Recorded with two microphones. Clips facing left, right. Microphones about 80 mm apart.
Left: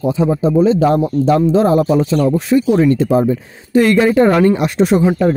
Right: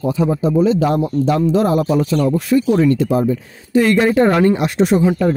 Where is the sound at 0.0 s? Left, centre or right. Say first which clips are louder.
Left 2 dB; left.